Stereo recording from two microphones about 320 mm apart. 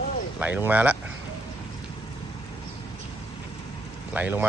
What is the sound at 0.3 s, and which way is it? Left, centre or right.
Speech, centre.